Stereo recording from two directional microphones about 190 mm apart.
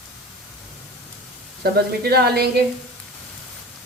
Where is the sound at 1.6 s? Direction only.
55° right (ahead or behind).